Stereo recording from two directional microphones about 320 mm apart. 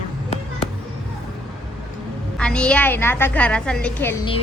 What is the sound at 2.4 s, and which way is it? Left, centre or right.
A woman's voice, centre.